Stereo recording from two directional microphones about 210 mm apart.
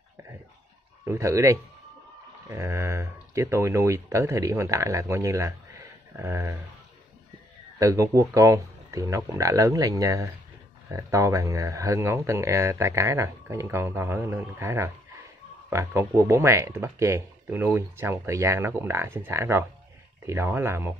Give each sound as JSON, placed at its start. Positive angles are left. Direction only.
{"t": 1.0, "sound": "speech", "side_deg": -15}
{"t": 7.8, "sound": "speech", "side_deg": -15}